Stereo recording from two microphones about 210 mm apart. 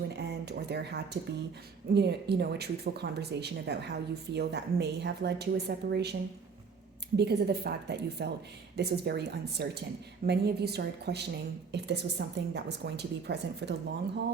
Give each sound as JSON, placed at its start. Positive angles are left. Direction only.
{"t": 0.2, "sound": "speech", "side_deg": -50}
{"t": 7.2, "sound": "speech", "side_deg": -50}